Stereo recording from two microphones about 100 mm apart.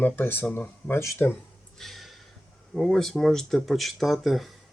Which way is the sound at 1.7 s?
Centre (ahead or behind).